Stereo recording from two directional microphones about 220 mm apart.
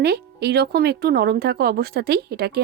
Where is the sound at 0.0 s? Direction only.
45° right (ahead or behind).